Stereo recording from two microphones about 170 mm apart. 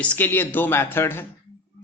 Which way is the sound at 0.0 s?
10° left (ahead or behind).